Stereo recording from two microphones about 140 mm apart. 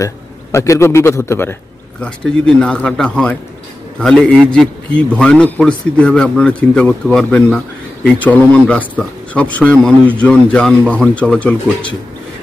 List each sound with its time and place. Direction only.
0.0 s a man's voice: 20° left (ahead or behind)